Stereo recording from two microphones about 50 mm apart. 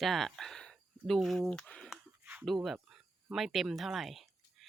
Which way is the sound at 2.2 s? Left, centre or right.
Right.